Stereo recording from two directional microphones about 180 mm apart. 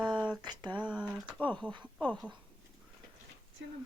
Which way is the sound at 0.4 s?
25° right (ahead or behind).